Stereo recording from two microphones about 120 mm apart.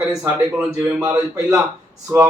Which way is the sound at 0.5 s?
10° right (ahead or behind).